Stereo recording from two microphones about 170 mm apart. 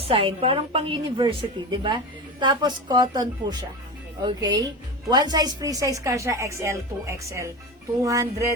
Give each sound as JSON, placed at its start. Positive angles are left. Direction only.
{"t": 0.0, "sound": "a woman's voice", "side_deg": -35}